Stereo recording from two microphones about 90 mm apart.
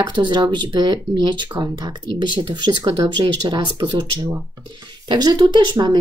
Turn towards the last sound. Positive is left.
turn(degrees=-55)  # may be behind; listen again after turning